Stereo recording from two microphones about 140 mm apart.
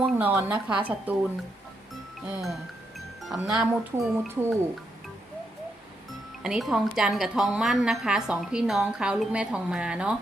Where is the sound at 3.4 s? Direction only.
10° right (ahead or behind).